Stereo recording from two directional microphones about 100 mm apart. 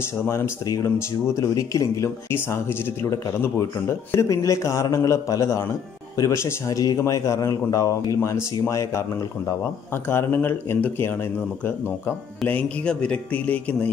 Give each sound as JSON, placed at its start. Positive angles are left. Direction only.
{"t": 0.3, "sound": "speech", "side_deg": 30}
{"t": 10.0, "sound": "speech", "side_deg": 20}
{"t": 12.4, "sound": "speech", "side_deg": 15}